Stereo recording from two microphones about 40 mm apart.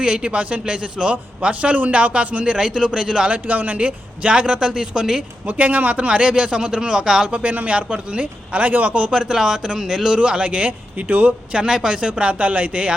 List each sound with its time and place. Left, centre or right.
0.0 s a man's voice: right
2.4 s a man's voice: centre
3.3 s a man's voice: right
3.8 s a man's voice: right
5.5 s a man's voice: right; by 7.3 s centre
7.3 s a man's voice: right
9.1 s speech: centre
10.2 s a man's voice: right
11.3 s a man's voice: right